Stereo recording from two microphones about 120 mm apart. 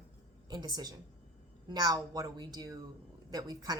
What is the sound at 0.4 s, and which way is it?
A woman's voice, 35° right (ahead or behind).